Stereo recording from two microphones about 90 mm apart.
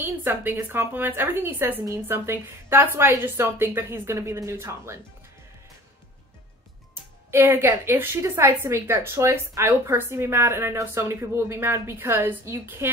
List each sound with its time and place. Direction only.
0.0 s a woman's voice: 25° right (ahead or behind)
7.2 s a woman's voice: 25° right (ahead or behind)